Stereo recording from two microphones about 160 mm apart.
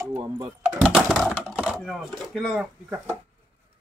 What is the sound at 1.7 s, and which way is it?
Chopping, centre (ahead or behind).